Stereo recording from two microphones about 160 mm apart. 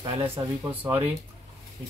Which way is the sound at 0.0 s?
15° right (ahead or behind).